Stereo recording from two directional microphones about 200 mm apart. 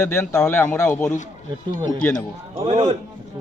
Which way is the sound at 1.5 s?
20° right (ahead or behind).